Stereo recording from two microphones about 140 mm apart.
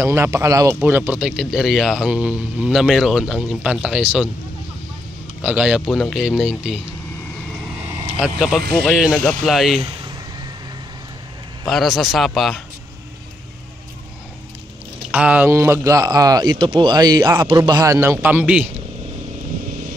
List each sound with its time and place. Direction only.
0.0 s speech: 20° right (ahead or behind)
5.4 s speech: 10° right (ahead or behind)
8.2 s speech: 5° right (ahead or behind)
11.6 s speech: centre (ahead or behind)
15.0 s speech: 10° right (ahead or behind)